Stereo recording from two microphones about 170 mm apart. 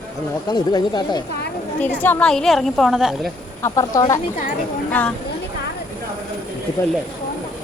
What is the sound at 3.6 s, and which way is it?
A woman's voice, 20° left (ahead or behind).